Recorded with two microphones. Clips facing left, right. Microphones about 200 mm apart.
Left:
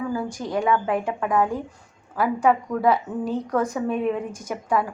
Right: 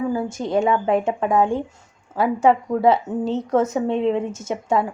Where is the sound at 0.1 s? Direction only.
25° right (ahead or behind).